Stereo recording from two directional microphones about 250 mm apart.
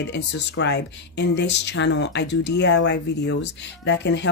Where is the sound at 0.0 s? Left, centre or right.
Left.